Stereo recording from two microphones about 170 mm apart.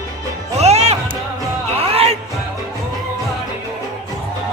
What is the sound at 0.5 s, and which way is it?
Music, 40° right (ahead or behind).